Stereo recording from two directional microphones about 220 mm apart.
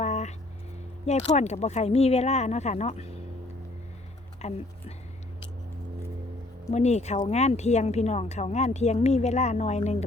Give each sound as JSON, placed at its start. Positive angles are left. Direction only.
{"t": 0.0, "sound": "a sound", "side_deg": 30}
{"t": 1.0, "sound": "speech", "side_deg": 30}
{"t": 4.4, "sound": "speech", "side_deg": 30}
{"t": 6.7, "sound": "speech", "side_deg": 30}